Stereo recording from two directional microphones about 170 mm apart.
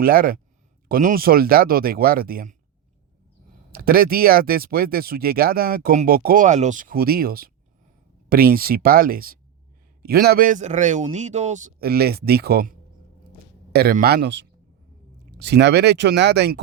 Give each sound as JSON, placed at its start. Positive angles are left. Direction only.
{"t": 0.0, "sound": "speech", "side_deg": -60}
{"t": 3.7, "sound": "a man's voice", "side_deg": -60}
{"t": 11.8, "sound": "speech", "side_deg": -65}
{"t": 13.7, "sound": "speech", "side_deg": -65}